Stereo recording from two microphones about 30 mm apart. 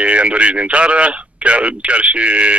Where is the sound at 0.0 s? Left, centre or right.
Right.